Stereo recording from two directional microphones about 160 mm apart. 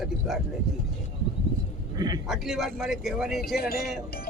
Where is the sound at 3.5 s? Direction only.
75° left (ahead or behind).